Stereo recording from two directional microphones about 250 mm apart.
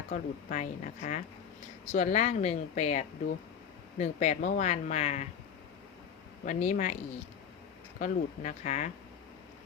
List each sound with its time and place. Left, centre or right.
0.1 s speech: left
6.4 s speech: left